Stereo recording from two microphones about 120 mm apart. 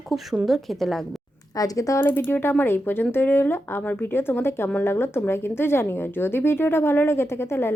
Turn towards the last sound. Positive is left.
turn(degrees=20)  # may be behind; listen again after turning